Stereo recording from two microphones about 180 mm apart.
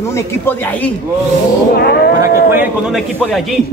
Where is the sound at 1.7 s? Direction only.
65° left (ahead or behind).